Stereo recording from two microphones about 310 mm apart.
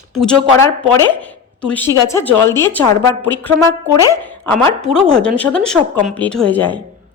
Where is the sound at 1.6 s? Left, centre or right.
Centre.